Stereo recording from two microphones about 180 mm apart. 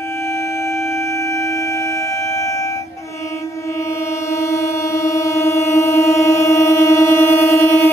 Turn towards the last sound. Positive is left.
turn(degrees=10)  # may be behind; listen again after turning